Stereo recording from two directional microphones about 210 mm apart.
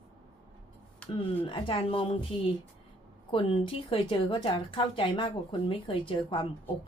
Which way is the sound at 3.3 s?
25° left (ahead or behind).